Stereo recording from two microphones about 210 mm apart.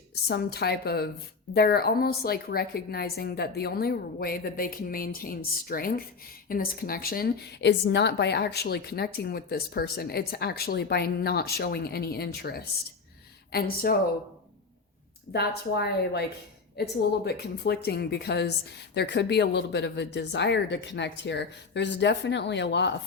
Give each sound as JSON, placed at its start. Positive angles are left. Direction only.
{"t": 0.1, "sound": "a woman's voice", "side_deg": 50}
{"t": 15.3, "sound": "a woman's voice", "side_deg": 50}